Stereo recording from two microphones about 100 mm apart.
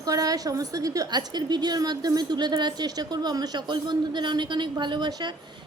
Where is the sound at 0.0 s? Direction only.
40° right (ahead or behind).